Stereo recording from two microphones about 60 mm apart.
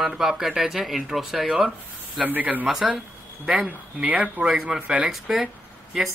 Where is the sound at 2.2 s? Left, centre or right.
Right.